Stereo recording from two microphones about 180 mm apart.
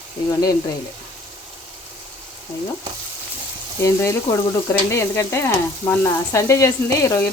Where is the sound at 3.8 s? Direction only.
15° left (ahead or behind).